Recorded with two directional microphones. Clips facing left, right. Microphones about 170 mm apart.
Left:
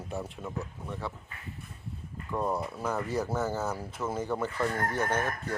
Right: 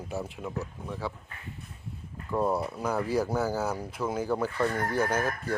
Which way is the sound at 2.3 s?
5° right (ahead or behind).